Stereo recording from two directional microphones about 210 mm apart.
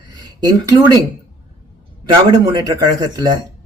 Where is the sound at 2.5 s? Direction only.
20° right (ahead or behind).